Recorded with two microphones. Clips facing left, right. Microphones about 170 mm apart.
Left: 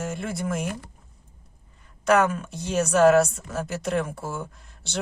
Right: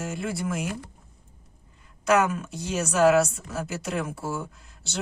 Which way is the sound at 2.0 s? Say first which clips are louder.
Left 2 dB; 5° right (ahead or behind).